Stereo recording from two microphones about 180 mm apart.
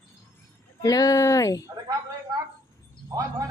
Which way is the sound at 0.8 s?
20° left (ahead or behind).